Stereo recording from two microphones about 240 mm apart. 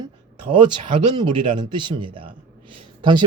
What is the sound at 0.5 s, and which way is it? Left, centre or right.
Speech, right.